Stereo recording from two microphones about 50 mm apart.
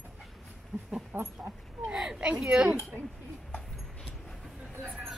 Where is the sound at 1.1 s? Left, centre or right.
Right.